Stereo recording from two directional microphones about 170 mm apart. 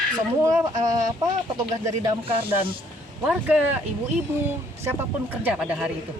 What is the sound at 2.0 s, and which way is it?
Speech, 30° right (ahead or behind).